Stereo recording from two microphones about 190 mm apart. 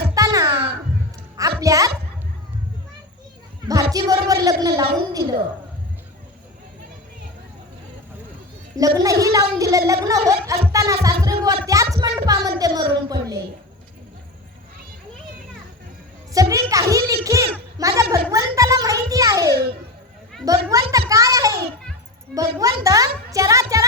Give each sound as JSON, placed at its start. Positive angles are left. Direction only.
{"t": 0.1, "sound": "crow", "side_deg": -20}
{"t": 1.4, "sound": "a sound", "side_deg": -15}
{"t": 3.7, "sound": "speech", "side_deg": -20}
{"t": 8.7, "sound": "a woman's voice", "side_deg": -20}
{"t": 10.7, "sound": "a sound", "side_deg": -15}
{"t": 11.9, "sound": "speech", "side_deg": -20}
{"t": 16.3, "sound": "music", "side_deg": -15}
{"t": 17.2, "sound": "a child's voice", "side_deg": -15}
{"t": 21.1, "sound": "a sound", "side_deg": -15}
{"t": 22.4, "sound": "a woman's voice", "side_deg": -15}